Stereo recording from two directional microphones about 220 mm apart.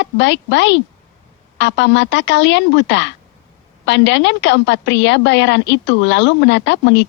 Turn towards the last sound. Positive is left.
turn(degrees=55)  # may be behind; listen again after turning